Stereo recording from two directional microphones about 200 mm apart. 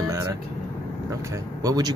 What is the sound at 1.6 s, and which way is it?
Speech, 20° right (ahead or behind).